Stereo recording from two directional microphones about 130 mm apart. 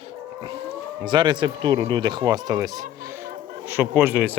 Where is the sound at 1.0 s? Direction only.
35° right (ahead or behind).